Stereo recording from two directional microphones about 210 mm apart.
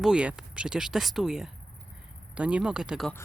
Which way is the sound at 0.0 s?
5° right (ahead or behind).